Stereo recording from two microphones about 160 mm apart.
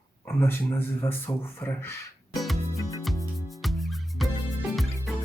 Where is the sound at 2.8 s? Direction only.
20° left (ahead or behind).